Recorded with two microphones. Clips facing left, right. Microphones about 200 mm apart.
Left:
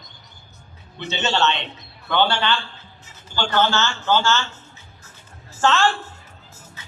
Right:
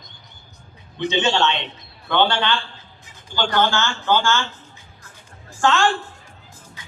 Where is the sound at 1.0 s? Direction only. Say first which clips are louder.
Right 3 dB; 15° right (ahead or behind).